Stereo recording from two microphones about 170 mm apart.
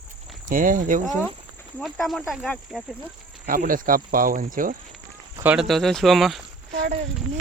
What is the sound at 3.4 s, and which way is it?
Speech, 55° right (ahead or behind).